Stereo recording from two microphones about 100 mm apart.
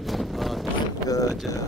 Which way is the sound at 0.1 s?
Centre (ahead or behind).